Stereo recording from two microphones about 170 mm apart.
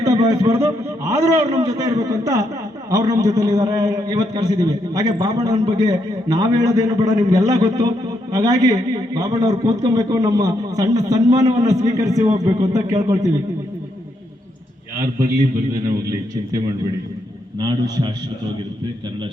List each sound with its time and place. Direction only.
0.0 s a man's voice: 20° right (ahead or behind)
14.9 s a man's voice: 20° right (ahead or behind)
17.6 s a man's voice: 25° right (ahead or behind)